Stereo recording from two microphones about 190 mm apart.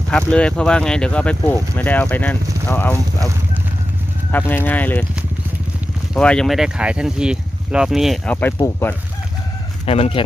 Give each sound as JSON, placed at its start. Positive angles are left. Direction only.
{"t": 0.1, "sound": "speech", "side_deg": 5}
{"t": 4.3, "sound": "speech", "side_deg": 10}
{"t": 6.1, "sound": "speech", "side_deg": 5}
{"t": 8.4, "sound": "speech", "side_deg": 10}
{"t": 9.8, "sound": "speech", "side_deg": 30}